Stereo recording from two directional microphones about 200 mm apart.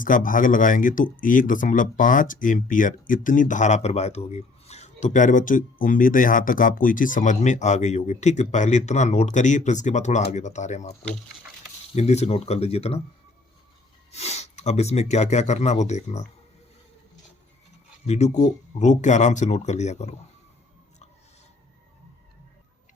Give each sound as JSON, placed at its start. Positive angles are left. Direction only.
{"t": 0.0, "sound": "speech", "side_deg": 40}
{"t": 14.1, "sound": "speech", "side_deg": 30}
{"t": 18.0, "sound": "speech", "side_deg": 35}